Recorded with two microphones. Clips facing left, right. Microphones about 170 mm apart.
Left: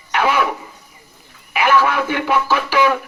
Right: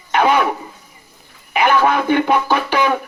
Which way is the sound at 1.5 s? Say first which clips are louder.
Right 1 dB; 35° right (ahead or behind).